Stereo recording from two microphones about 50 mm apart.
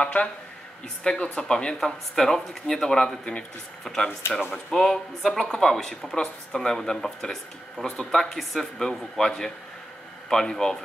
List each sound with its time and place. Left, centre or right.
0.0 s speech: left